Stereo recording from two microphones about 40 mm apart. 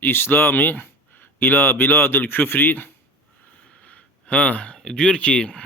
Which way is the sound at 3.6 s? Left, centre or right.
Left.